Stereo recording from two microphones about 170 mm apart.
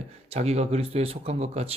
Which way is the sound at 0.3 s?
40° right (ahead or behind).